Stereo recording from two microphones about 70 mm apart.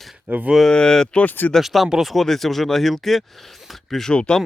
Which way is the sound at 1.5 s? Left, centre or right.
Centre.